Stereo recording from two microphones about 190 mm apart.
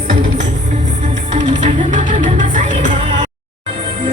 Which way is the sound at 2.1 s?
40° right (ahead or behind).